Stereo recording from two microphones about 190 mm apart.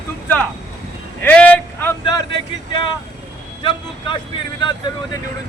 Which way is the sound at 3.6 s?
25° left (ahead or behind).